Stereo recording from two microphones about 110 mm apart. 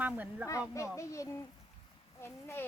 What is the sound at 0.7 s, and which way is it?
A child's voice, 30° left (ahead or behind).